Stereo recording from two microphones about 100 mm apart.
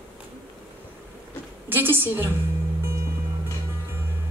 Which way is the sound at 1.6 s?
20° right (ahead or behind).